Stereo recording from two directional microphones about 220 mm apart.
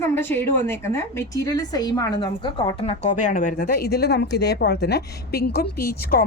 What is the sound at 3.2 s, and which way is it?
Speech, 35° left (ahead or behind).